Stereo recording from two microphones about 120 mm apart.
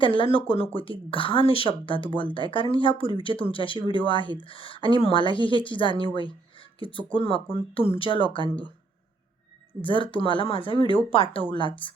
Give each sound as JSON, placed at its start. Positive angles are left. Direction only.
{"t": 0.0, "sound": "speech", "side_deg": 45}
{"t": 9.8, "sound": "speech", "side_deg": 45}